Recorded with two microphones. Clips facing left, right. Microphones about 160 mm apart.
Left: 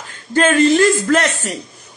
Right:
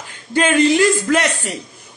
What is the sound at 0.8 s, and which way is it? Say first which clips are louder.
Speech: left 1 dB; 45° left (ahead or behind).